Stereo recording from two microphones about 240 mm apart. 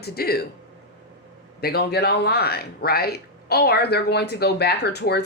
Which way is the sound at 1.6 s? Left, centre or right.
Left.